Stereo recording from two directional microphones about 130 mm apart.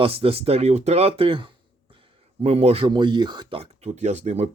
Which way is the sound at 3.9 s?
65° right (ahead or behind).